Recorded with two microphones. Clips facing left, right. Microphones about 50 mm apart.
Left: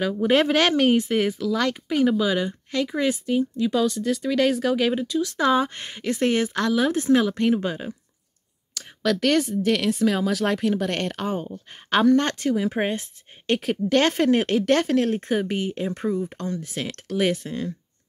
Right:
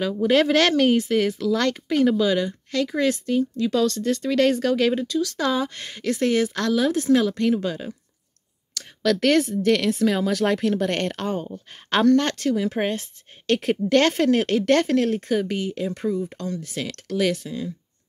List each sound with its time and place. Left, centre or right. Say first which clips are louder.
0.2 s speech: right 1 dB; left
1.4 s speech: right 2 dB; centre
8.7 s a sound: right 2 dB; centre
9.2 s speech: right 2 dB; centre
15.1 s speech: right 1 dB; left
17.5 s speech: left 1 dB; left